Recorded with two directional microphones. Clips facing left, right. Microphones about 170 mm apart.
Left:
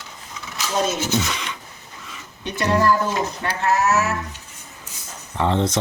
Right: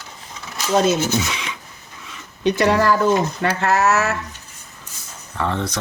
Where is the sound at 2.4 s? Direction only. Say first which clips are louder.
Right 4 dB; 85° right.